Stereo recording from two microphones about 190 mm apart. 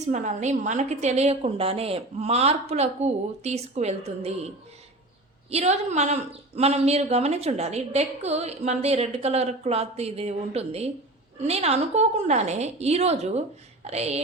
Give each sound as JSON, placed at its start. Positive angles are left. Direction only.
{"t": 0.0, "sound": "speech", "side_deg": -40}